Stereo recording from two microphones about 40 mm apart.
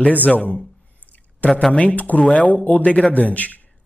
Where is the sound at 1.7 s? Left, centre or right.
Left.